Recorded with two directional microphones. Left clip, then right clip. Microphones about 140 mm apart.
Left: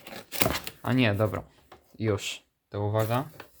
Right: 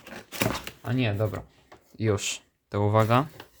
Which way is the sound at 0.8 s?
40° left (ahead or behind).